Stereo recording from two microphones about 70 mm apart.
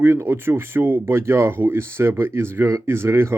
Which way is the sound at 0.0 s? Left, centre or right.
Right.